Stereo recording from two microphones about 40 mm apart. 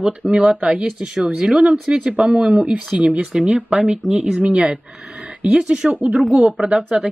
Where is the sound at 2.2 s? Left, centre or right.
Centre.